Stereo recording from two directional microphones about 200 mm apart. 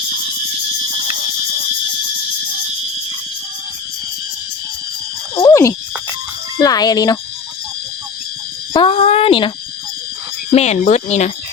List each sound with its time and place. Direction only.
5.3 s frog: 20° left (ahead or behind)
6.6 s speech: 20° left (ahead or behind)
8.7 s a sound: 25° left (ahead or behind)
10.5 s speech: 35° left (ahead or behind)